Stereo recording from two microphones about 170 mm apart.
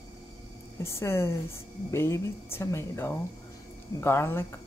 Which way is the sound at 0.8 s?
15° left (ahead or behind).